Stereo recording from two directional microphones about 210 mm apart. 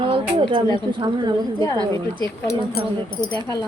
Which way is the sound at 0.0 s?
25° right (ahead or behind).